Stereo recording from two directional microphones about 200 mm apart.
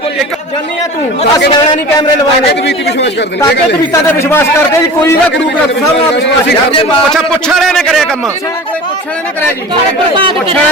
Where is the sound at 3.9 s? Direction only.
10° left (ahead or behind).